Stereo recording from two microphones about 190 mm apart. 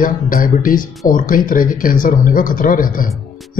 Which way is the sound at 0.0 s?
45° left (ahead or behind).